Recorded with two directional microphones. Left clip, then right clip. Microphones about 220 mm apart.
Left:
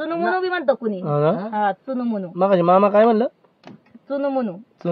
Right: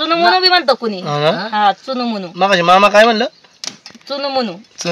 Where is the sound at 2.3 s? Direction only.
5° right (ahead or behind).